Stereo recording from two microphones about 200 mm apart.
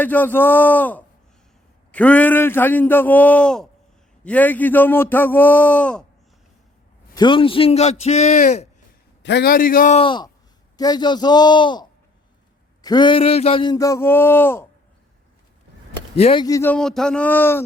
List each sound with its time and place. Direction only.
0.0 s a man's voice: 10° left (ahead or behind)
7.1 s speech: 20° left (ahead or behind)
9.2 s a man's voice: 55° left (ahead or behind)
10.0 s speech: 25° left (ahead or behind)
16.1 s a man's voice: 30° left (ahead or behind); by 17.6 s 10° left (ahead or behind)